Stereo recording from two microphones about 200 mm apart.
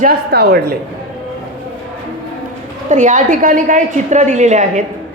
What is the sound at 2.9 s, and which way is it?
A woman's voice, 40° right (ahead or behind).